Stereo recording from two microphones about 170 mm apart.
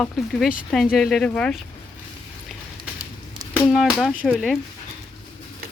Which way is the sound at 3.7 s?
Centre (ahead or behind).